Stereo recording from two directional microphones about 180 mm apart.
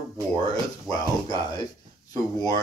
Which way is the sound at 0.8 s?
20° left (ahead or behind).